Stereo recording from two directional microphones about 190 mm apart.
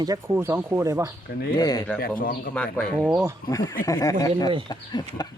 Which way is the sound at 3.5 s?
20° left (ahead or behind).